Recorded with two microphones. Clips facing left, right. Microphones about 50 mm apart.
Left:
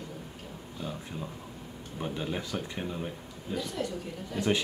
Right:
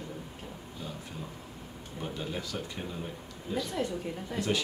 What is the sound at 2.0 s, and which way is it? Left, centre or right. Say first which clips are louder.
Speech: left 3 dB; centre.